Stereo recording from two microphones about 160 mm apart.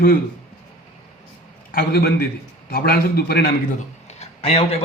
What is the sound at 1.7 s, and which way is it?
A man's voice, 75° left (ahead or behind).